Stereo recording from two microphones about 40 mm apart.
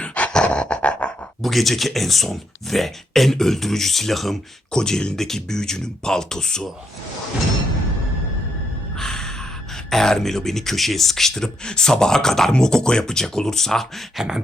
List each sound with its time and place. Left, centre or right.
0.0 s a sound: left
1.4 s speech: centre
4.7 s speech: centre
9.0 s gasp: centre
9.9 s speech: centre
14.2 s beatboxing: centre